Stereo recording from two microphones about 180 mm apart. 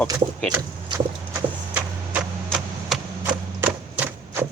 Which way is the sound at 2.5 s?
5° right (ahead or behind).